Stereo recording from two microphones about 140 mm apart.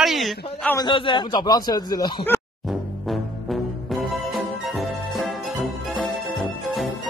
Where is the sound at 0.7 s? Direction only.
35° left (ahead or behind).